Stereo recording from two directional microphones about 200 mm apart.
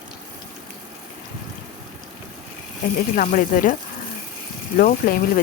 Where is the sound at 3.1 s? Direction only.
40° left (ahead or behind).